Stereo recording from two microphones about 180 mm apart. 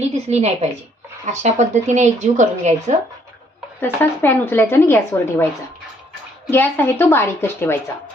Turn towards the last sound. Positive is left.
turn(degrees=15)  # may be behind; listen again after turning